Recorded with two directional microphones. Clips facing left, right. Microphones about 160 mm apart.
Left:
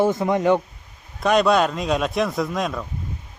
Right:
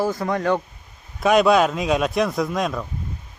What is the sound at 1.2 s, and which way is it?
Speech, centre (ahead or behind).